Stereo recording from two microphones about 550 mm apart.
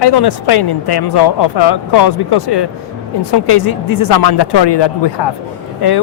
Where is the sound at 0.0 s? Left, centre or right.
Left.